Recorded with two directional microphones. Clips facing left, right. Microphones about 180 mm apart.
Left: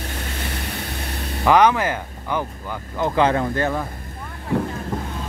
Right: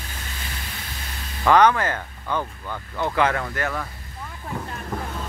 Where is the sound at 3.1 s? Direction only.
25° left (ahead or behind).